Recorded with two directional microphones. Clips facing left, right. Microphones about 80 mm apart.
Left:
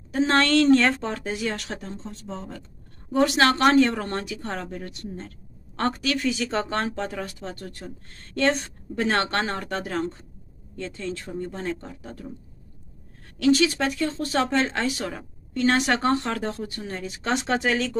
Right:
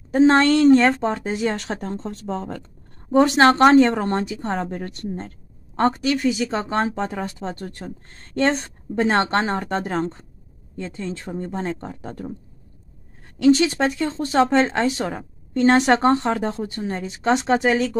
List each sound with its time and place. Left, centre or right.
0.2 s speech: right
2.0 s speech: right
2.3 s speech: right
3.1 s speech: right
4.6 s a woman's voice: right
5.8 s speech: right
11.8 s speech: right
13.4 s speech: right